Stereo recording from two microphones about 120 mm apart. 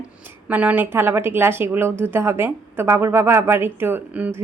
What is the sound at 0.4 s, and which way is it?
Speech, 10° right (ahead or behind).